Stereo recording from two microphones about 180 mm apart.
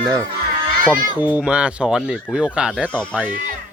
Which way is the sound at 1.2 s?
5° right (ahead or behind).